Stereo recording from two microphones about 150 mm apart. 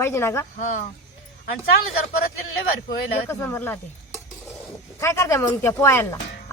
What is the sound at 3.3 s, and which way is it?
Speech, 15° left (ahead or behind).